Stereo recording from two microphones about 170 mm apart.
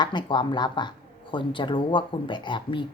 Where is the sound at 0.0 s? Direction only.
25° left (ahead or behind).